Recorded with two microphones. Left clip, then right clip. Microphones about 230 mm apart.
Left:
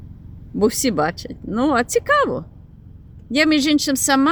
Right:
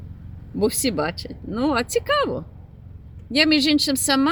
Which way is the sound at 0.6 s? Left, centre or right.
Centre.